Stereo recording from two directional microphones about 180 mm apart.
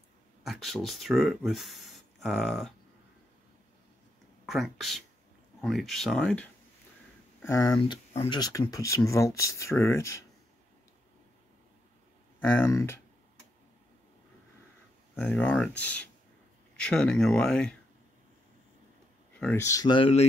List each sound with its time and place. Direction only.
0.5 s speech: centre (ahead or behind)
4.5 s speech: centre (ahead or behind)
7.4 s speech: 15° left (ahead or behind)
7.8 s speech: 30° left (ahead or behind); by 10.2 s 15° left (ahead or behind)
12.4 s speech: 10° left (ahead or behind)
15.1 s speech: 5° left (ahead or behind)
19.4 s speech: 15° left (ahead or behind); by 20.2 s 30° left (ahead or behind)